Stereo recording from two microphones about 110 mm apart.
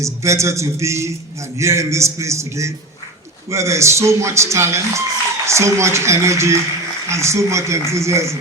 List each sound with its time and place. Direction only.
0.0 s a man's voice: 25° right (ahead or behind)